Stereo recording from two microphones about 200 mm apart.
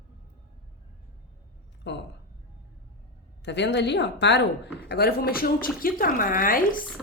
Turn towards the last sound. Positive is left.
turn(degrees=45)  # may be behind; listen again after turning